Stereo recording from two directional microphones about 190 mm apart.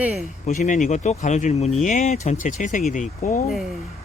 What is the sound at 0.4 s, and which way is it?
Speech, 40° left (ahead or behind).